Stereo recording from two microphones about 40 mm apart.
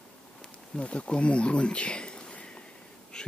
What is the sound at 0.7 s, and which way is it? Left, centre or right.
Speech, left.